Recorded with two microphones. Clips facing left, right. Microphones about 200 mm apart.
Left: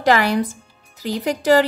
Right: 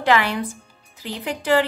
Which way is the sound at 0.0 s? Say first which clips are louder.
Left 3 dB; 40° left (ahead or behind).